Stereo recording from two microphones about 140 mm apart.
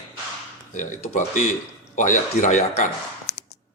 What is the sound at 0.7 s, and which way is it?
A man's voice, 65° left (ahead or behind).